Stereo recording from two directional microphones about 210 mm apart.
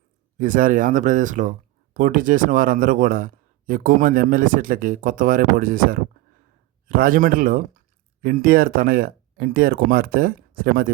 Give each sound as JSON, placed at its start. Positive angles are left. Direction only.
{"t": 0.3, "sound": "speech", "side_deg": -40}